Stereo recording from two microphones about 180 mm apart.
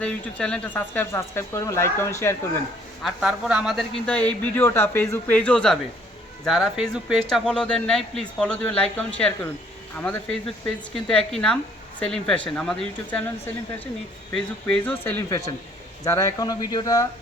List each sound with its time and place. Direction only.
0.0 s a man's voice: 5° left (ahead or behind)
3.0 s a man's voice: 5° right (ahead or behind); by 17.1 s 20° left (ahead or behind)